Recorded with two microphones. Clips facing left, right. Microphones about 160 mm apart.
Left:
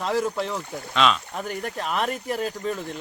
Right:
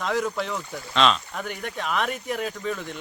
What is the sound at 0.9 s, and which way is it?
Speech, 5° left (ahead or behind).